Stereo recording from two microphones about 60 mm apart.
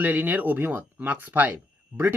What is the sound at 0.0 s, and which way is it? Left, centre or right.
Speech, right.